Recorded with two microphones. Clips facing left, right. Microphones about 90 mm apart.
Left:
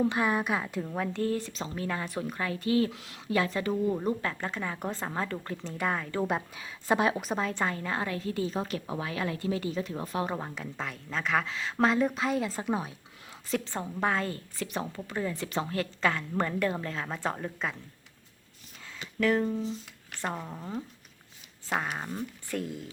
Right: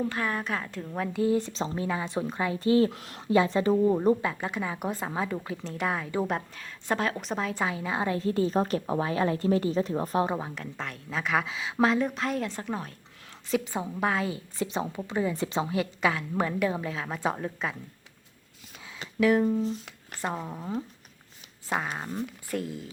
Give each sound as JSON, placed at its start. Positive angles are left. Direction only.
{"t": 0.0, "sound": "a woman's voice", "side_deg": 15}
{"t": 1.5, "sound": "a woman's voice", "side_deg": -25}
{"t": 2.9, "sound": "speech", "side_deg": -45}
{"t": 3.2, "sound": "a woman's voice", "side_deg": -25}
{"t": 4.2, "sound": "a woman's voice", "side_deg": -10}
{"t": 7.3, "sound": "a woman's voice", "side_deg": 0}
{"t": 8.0, "sound": "a woman's voice", "side_deg": -30}
{"t": 10.3, "sound": "a woman's voice", "side_deg": 0}
{"t": 13.5, "sound": "a woman's voice", "side_deg": -10}
{"t": 14.6, "sound": "a woman's voice", "side_deg": -20}
{"t": 19.2, "sound": "a woman's voice", "side_deg": -10}
{"t": 21.9, "sound": "a woman's voice", "side_deg": 0}